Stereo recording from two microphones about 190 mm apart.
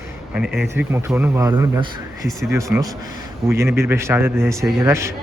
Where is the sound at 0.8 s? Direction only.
10° right (ahead or behind).